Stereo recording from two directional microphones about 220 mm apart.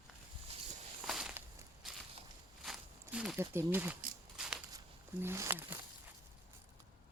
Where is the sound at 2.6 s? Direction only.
Centre (ahead or behind).